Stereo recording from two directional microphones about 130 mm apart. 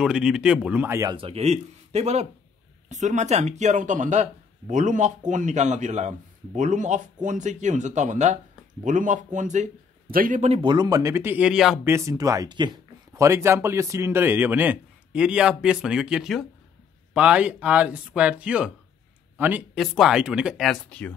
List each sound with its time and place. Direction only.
0.0 s a man's voice: 5° right (ahead or behind); by 1.1 s 20° right (ahead or behind)
1.1 s speech: 45° right (ahead or behind); by 8.4 s 65° right (ahead or behind)
8.8 s speech: 75° right (ahead or behind)
10.1 s speech: 90° right
10.5 s speech: 40° right (ahead or behind); by 11.8 s 5° right (ahead or behind)
11.8 s speech: 20° right (ahead or behind)
13.1 s a man's voice: 25° right (ahead or behind)
19.7 s speech: centre (ahead or behind)